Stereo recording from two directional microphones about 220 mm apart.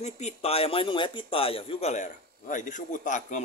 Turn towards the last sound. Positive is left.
turn(degrees=35)  # may be behind; listen again after turning